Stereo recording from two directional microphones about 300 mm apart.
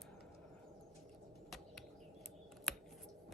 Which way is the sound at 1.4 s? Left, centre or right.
Centre.